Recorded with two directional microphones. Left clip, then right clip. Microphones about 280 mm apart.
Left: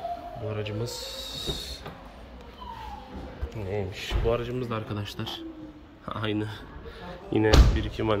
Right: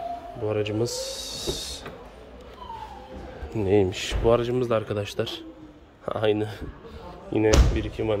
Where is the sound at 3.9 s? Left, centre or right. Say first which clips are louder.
Right 6 dB; right.